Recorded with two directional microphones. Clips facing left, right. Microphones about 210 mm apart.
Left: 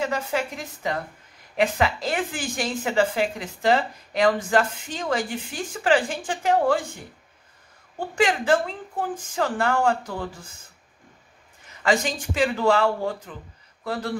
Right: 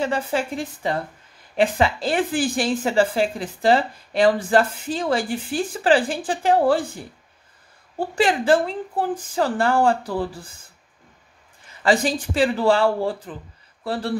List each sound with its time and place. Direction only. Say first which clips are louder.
0.0 s a woman's voice: right 3 dB; 30° right (ahead or behind)
8.0 s a woman's voice: right 2 dB; 35° right (ahead or behind)
11.8 s a woman's voice: right 4 dB; 35° right (ahead or behind)